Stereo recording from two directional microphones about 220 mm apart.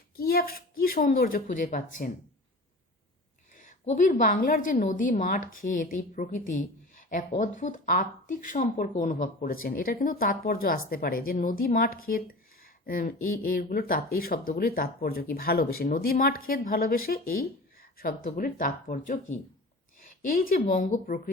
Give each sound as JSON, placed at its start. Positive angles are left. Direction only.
{"t": 0.2, "sound": "speech", "side_deg": 45}
{"t": 3.8, "sound": "a woman's voice", "side_deg": 35}